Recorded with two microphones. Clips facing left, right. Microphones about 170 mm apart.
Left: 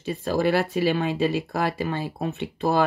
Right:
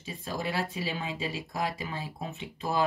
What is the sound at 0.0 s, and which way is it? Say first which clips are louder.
Speech: left 12 dB; 70° left (ahead or behind).